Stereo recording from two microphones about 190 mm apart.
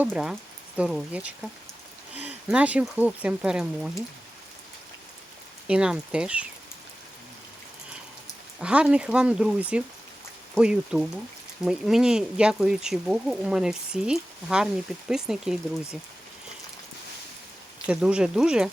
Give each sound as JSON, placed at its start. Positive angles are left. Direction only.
{"t": 0.0, "sound": "speech", "side_deg": -5}
{"t": 5.6, "sound": "speech", "side_deg": -5}
{"t": 8.5, "sound": "speech", "side_deg": -5}
{"t": 17.8, "sound": "speech", "side_deg": -5}